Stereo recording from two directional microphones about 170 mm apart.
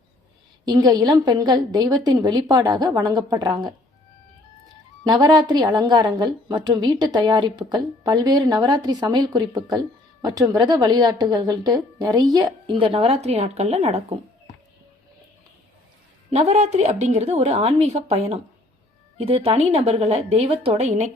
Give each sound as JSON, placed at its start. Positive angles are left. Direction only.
{"t": 0.6, "sound": "a woman's voice", "side_deg": -25}
{"t": 5.0, "sound": "a woman's voice", "side_deg": -25}
{"t": 16.3, "sound": "a woman's voice", "side_deg": -40}